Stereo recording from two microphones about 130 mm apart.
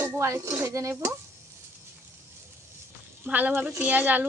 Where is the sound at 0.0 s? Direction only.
20° right (ahead or behind).